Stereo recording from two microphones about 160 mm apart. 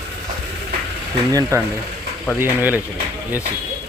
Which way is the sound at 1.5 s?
20° right (ahead or behind).